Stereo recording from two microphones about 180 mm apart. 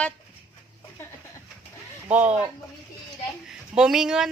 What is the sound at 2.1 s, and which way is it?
Speech, 10° right (ahead or behind).